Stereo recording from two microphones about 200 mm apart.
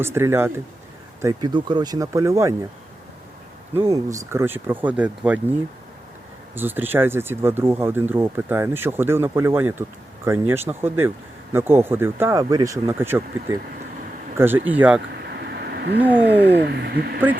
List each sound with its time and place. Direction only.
0.0 s speech: 10° right (ahead or behind)
3.8 s speech: 15° right (ahead or behind)
6.5 s speech: 10° right (ahead or behind)
15.4 s a sound: 55° right (ahead or behind)
16.0 s speech: 10° right (ahead or behind)
16.3 s speech: 55° right (ahead or behind)